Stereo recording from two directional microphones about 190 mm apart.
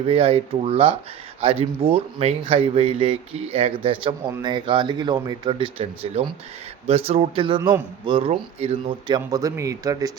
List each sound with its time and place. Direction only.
0.1 s speech: 30° right (ahead or behind)